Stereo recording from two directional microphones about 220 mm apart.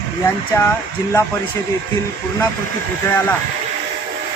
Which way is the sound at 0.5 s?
15° left (ahead or behind).